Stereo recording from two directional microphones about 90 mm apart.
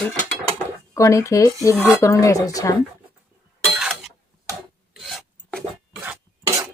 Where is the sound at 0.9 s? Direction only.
35° left (ahead or behind).